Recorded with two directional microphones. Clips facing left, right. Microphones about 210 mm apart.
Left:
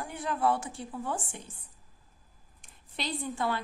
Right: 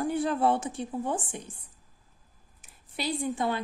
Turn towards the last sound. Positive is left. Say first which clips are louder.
# right 3 dB
turn(degrees=-15)  # may be behind; listen again after turning